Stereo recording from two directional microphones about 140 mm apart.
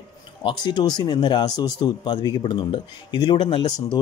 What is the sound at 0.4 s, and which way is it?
Speech, 35° left (ahead or behind).